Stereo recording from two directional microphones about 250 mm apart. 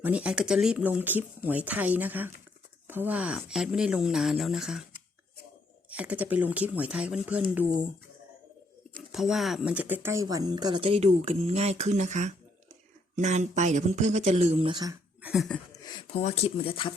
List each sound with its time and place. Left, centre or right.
0.0 s speech: centre
5.9 s speech: centre
8.9 s speech: centre
15.8 s speech: centre